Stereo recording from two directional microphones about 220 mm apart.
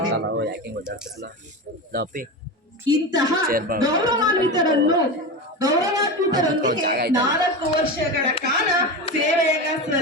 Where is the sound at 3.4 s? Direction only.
40° right (ahead or behind).